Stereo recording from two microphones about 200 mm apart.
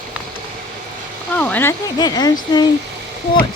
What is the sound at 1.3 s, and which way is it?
Speech, 10° left (ahead or behind).